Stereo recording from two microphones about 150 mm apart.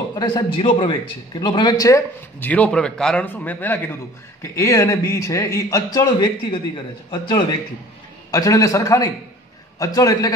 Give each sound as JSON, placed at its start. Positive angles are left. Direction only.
{"t": 0.1, "sound": "a man's voice", "side_deg": 30}